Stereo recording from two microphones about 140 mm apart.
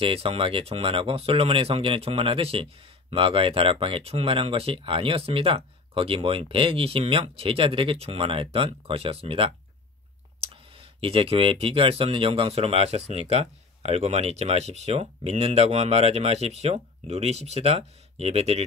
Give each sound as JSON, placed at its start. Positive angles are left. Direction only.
{"t": 0.0, "sound": "speech", "side_deg": -40}